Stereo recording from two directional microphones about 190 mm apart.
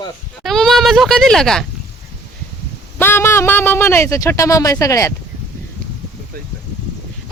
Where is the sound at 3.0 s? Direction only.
10° left (ahead or behind).